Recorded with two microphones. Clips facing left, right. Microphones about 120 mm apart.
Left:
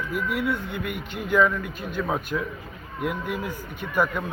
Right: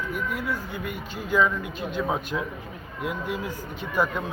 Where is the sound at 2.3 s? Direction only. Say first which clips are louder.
Left 1 dB; 15° right (ahead or behind).